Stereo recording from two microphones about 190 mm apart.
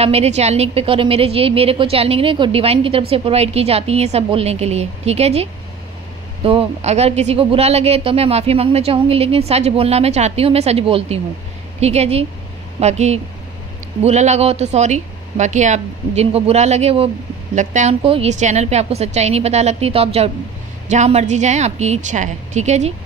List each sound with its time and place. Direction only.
0.0 s a woman's voice: 35° right (ahead or behind)